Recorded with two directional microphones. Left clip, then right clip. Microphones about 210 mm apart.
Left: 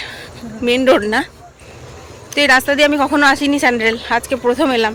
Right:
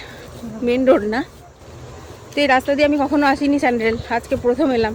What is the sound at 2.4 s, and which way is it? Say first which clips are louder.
Speech: left 4 dB; centre (ahead or behind).